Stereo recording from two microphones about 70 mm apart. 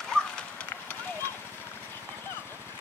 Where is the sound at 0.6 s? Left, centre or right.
Left.